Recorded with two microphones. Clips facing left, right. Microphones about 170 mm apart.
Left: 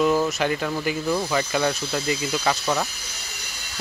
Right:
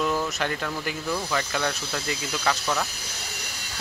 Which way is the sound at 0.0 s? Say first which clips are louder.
Left 6 dB; 10° left (ahead or behind).